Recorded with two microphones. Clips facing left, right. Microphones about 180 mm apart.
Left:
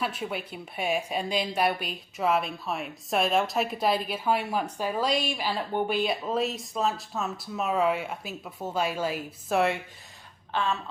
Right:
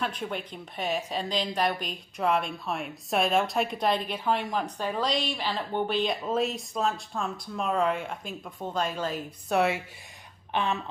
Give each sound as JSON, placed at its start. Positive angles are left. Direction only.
{"t": 0.0, "sound": "a woman's voice", "side_deg": 5}
{"t": 10.5, "sound": "speech", "side_deg": -20}